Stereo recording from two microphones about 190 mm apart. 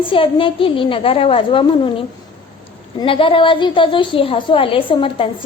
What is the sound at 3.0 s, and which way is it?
A woman's voice, 30° left (ahead or behind).